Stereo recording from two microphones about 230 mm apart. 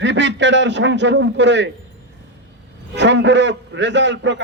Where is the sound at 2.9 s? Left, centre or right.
Right.